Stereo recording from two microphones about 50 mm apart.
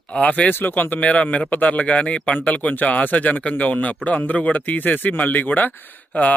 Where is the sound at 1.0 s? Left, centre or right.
Left.